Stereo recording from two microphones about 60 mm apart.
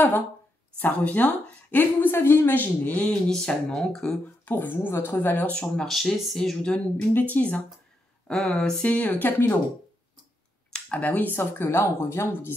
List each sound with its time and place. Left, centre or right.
0.7 s speech: left
3.1 s speech: centre
4.5 s speech: left
5.5 s speech: centre
5.9 s speech: centre
7.0 s speech: left
8.3 s speech: centre
8.8 s speech: left
10.7 s speech: left